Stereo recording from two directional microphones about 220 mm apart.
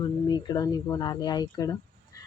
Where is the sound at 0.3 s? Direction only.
20° left (ahead or behind).